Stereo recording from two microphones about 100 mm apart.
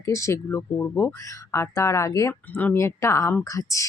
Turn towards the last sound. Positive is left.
turn(degrees=35)  # may be behind; listen again after turning